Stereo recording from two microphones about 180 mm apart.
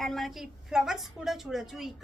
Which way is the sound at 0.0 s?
Centre (ahead or behind).